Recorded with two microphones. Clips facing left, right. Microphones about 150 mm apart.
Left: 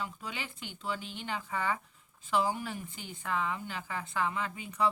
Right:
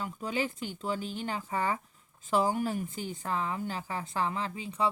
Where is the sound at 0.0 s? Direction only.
40° right (ahead or behind).